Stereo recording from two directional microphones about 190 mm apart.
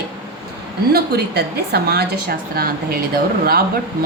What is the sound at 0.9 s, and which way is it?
A woman's voice, 60° right (ahead or behind).